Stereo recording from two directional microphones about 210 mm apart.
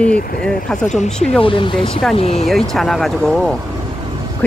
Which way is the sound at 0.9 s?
30° left (ahead or behind).